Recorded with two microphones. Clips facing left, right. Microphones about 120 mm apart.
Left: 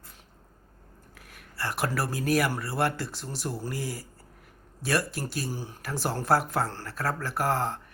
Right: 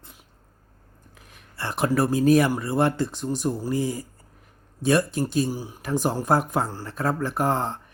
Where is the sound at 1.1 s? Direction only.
25° right (ahead or behind).